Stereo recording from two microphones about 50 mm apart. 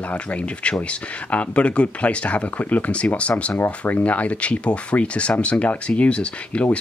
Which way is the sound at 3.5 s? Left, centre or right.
Left.